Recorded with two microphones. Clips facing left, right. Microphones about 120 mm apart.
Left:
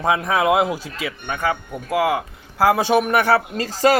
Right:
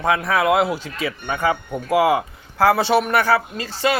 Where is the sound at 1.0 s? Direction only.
Centre (ahead or behind).